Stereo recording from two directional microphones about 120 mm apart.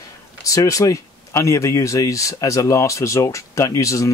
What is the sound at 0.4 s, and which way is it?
Speech, 30° left (ahead or behind).